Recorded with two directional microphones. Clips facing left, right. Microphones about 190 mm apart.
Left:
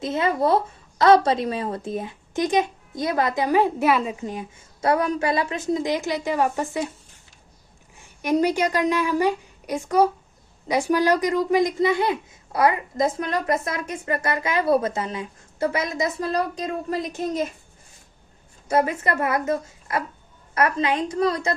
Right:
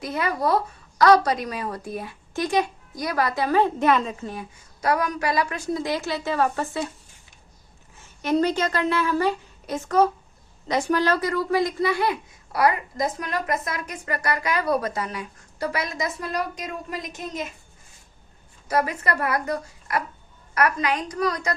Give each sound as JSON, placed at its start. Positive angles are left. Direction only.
{"t": 0.0, "sound": "a woman's voice", "side_deg": 25}
{"t": 7.9, "sound": "a woman's voice", "side_deg": 15}
{"t": 18.7, "sound": "a woman's voice", "side_deg": 25}